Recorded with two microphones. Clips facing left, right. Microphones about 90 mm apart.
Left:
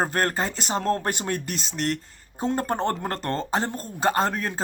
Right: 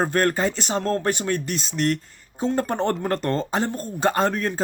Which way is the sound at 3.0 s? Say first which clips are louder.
Right 4 dB; 30° left (ahead or behind).